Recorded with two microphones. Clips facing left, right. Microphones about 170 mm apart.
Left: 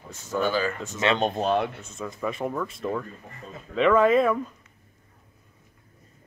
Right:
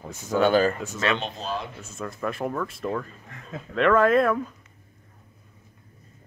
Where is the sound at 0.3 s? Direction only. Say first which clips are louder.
Right 5 dB; 70° right (ahead or behind).